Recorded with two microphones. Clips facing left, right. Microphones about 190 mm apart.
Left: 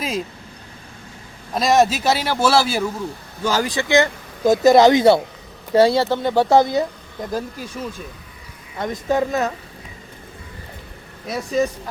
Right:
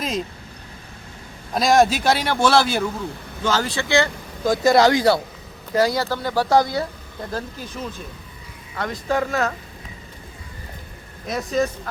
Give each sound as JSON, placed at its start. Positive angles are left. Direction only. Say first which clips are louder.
{"t": 1.5, "sound": "a man's voice", "louder": "even", "side_deg": 0}
{"t": 11.3, "sound": "speech", "louder": "left 1 dB", "side_deg": 5}